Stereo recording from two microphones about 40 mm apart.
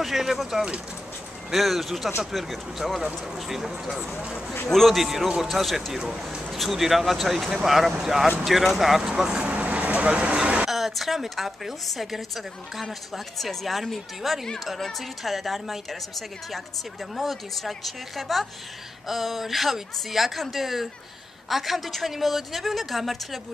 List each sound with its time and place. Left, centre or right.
0.0 s speech: centre
1.5 s a woman's voice: centre
4.6 s speech: centre
5.0 s a woman's voice: centre
5.9 s a woman's voice: centre
9.6 s vehicle: right
10.7 s a woman's voice: centre